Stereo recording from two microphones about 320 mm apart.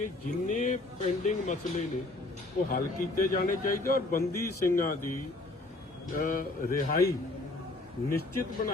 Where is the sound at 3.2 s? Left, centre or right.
Left.